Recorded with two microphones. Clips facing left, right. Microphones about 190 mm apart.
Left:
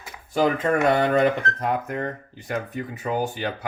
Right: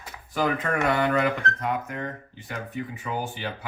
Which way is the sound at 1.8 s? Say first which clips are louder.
Left 5 dB; 45° left (ahead or behind).